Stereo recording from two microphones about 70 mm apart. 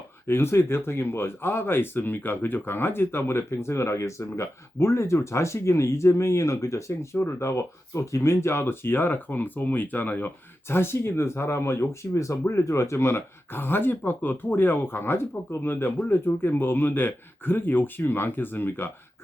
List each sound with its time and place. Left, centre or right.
0.3 s speech: left